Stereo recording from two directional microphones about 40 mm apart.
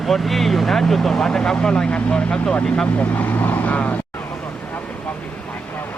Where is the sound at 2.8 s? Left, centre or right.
Left.